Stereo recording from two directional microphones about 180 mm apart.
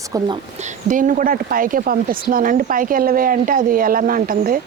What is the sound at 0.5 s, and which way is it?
Speech, 45° right (ahead or behind).